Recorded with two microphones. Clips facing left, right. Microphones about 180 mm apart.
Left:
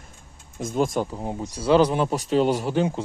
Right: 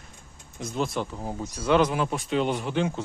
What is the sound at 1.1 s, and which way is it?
Speech, 25° left (ahead or behind).